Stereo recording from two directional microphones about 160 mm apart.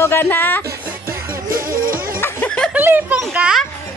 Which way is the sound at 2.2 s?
10° left (ahead or behind).